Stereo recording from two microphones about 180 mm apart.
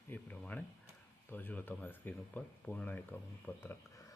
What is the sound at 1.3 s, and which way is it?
Speech, 10° left (ahead or behind).